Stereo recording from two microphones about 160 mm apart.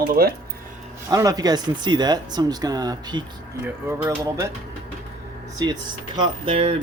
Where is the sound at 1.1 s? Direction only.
20° right (ahead or behind).